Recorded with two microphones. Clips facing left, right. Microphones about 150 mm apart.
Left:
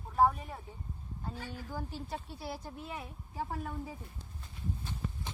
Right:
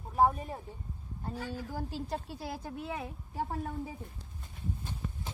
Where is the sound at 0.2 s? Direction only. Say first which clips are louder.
Right 1 dB; 20° right (ahead or behind).